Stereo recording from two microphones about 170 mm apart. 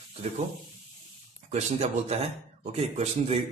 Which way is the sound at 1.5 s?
40° right (ahead or behind).